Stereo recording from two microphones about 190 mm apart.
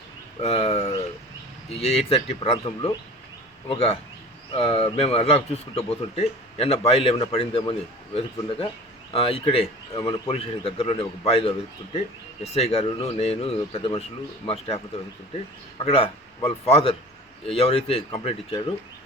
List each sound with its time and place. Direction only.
0.4 s a man's voice: 35° left (ahead or behind)
15.8 s a man's voice: 30° left (ahead or behind)